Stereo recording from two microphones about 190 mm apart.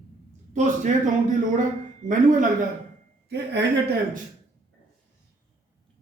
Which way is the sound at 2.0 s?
45° right (ahead or behind).